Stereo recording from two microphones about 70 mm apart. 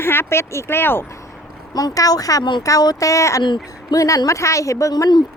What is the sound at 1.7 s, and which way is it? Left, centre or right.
Speech, left.